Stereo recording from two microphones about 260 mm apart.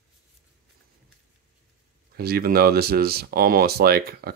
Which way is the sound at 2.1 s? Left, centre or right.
Right.